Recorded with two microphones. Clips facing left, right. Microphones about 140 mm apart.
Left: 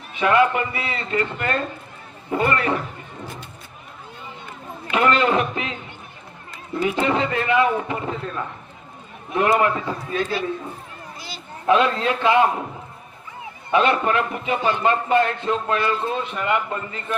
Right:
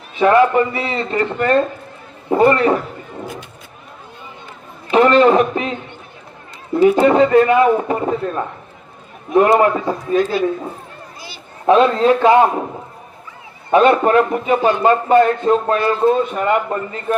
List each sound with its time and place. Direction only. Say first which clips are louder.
0.2 s a man's voice: right 6 dB; 40° right (ahead or behind)
4.9 s a man's voice: right 8 dB; 40° right (ahead or behind)
6.8 s a man's voice: right 10 dB; 45° right (ahead or behind)
9.3 s a man's voice: right 7 dB; 40° right (ahead or behind)
11.6 s a man's voice: right 7 dB; 35° right (ahead or behind)
13.7 s a man's voice: right 7 dB; 45° right (ahead or behind)